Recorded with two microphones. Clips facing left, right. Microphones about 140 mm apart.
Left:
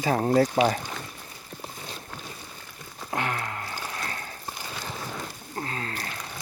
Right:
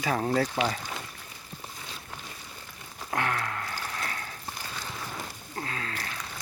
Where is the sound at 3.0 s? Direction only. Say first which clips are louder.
Even; 20° left (ahead or behind).